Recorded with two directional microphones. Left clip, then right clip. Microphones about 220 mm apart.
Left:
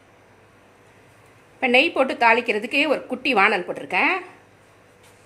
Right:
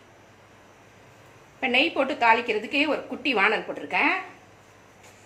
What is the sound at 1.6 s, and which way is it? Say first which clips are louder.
Speech: left 5 dB; 50° left (ahead or behind).